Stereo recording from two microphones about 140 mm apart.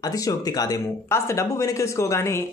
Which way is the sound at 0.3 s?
25° left (ahead or behind).